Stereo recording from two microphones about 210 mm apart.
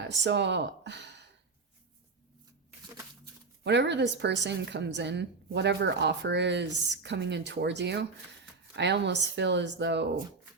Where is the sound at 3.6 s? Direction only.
55° right (ahead or behind).